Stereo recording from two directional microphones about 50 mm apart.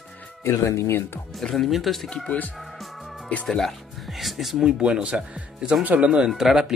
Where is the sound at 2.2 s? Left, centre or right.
Left.